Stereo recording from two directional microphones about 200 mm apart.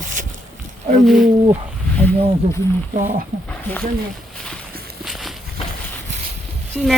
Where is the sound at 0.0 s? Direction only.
40° right (ahead or behind).